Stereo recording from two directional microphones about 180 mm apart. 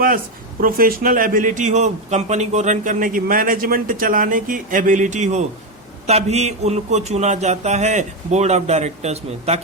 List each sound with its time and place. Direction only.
0.6 s a man's voice: 55° right (ahead or behind); by 9.6 s 35° right (ahead or behind)